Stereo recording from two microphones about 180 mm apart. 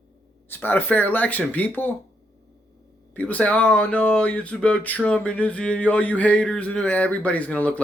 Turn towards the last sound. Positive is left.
turn(degrees=10)  # may be behind; listen again after turning